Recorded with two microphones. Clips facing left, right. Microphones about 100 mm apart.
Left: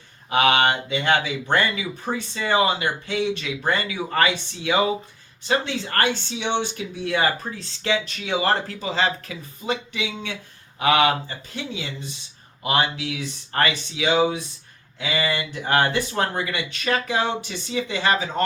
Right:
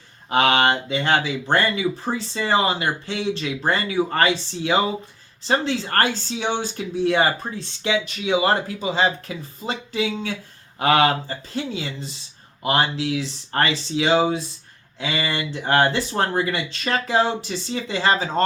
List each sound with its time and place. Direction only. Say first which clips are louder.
0.3 s speech: right 1 dB; 30° right (ahead or behind)
5.5 s speech: right 2 dB; 35° right (ahead or behind)
7.9 s speech: right 2 dB; 15° right (ahead or behind)
9.2 s speech: even; 30° right (ahead or behind)